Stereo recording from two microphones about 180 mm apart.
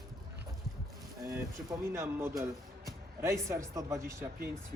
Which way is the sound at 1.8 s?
15° right (ahead or behind).